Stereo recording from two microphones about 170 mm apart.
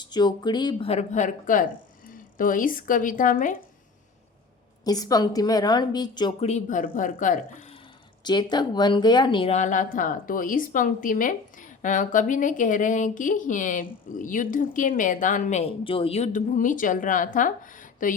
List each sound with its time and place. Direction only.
0.0 s speech: 25° left (ahead or behind); by 3.6 s 50° left (ahead or behind)
4.9 s a woman's voice: 20° left (ahead or behind)
6.4 s speech: 45° left (ahead or behind)
8.2 s speech: 25° left (ahead or behind); by 18.2 s 50° left (ahead or behind)